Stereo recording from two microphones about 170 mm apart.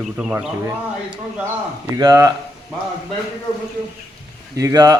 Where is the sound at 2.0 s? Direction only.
20° right (ahead or behind).